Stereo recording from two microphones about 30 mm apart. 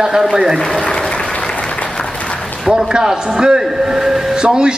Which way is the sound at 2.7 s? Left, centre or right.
Right.